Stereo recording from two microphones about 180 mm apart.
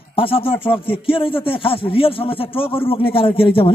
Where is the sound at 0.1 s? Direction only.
30° left (ahead or behind).